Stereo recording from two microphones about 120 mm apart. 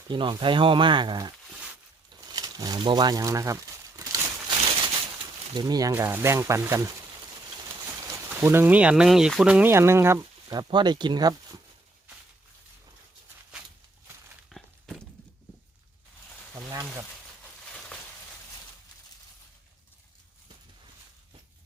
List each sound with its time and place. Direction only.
0.1 s speech: 40° right (ahead or behind)
2.2 s crumpling: 35° right (ahead or behind)
5.5 s speech: 35° right (ahead or behind)
5.9 s speech: 20° right (ahead or behind)
8.3 s speech: 15° right (ahead or behind)
9.7 s speech: 20° right (ahead or behind)
10.5 s speech: 40° right (ahead or behind)
14.5 s walk: centre (ahead or behind)
16.6 s a sound: 20° right (ahead or behind)